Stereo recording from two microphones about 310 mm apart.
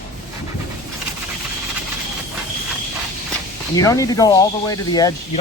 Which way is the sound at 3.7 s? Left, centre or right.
Centre.